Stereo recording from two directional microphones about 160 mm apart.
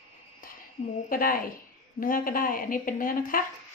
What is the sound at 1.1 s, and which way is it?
A woman's voice, 60° left (ahead or behind).